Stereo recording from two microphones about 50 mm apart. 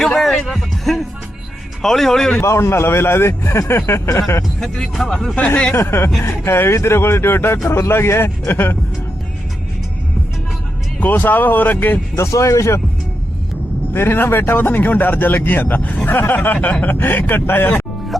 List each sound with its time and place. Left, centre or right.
0.2 s music: centre
1.8 s speech: centre
2.4 s speech: left
4.6 s speech: centre
5.7 s speech: left
11.0 s speech: left
12.1 s speech: left
13.9 s a man's voice: left